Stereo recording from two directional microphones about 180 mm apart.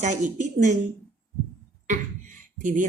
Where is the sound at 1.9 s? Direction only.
45° right (ahead or behind).